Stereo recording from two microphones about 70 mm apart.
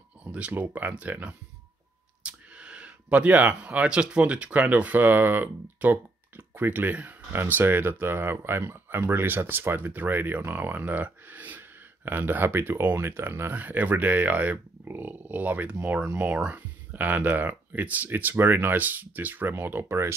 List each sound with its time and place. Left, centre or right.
0.2 s speech: centre; by 20.2 s right